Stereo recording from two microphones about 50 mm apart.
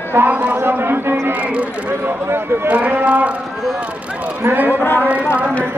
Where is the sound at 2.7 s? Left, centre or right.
Right.